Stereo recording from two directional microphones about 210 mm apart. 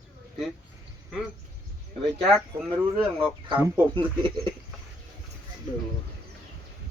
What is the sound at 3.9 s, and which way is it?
Speech, 20° right (ahead or behind).